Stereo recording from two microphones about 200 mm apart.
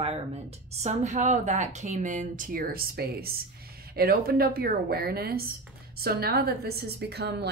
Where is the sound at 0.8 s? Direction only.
35° right (ahead or behind).